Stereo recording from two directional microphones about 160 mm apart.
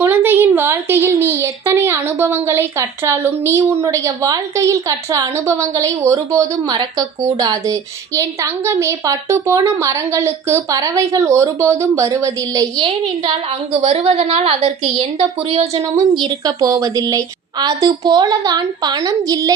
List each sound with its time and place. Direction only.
0.0 s a woman's voice: 10° right (ahead or behind)
13.8 s a woman's voice: 35° right (ahead or behind)
16.2 s speech: 25° right (ahead or behind)